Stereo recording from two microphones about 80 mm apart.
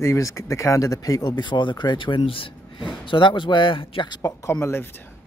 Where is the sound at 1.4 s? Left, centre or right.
Left.